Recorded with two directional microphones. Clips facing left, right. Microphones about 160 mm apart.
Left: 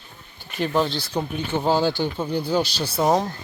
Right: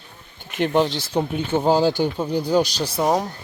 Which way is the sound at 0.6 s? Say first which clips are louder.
Right 3 dB; 20° right (ahead or behind).